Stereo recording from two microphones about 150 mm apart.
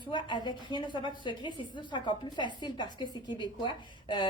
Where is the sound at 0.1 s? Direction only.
30° left (ahead or behind).